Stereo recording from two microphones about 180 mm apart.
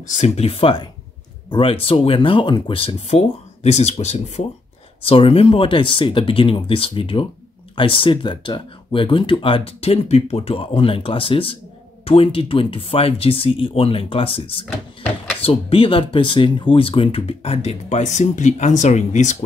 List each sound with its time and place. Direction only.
0.1 s speech: 40° left (ahead or behind)